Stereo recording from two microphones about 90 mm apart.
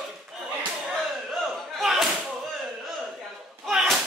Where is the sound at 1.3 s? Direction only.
Centre (ahead or behind).